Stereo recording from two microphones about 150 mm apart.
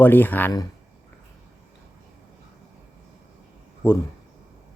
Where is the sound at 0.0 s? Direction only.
10° left (ahead or behind).